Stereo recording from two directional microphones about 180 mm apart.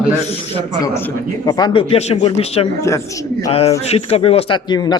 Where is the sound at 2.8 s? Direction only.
15° left (ahead or behind).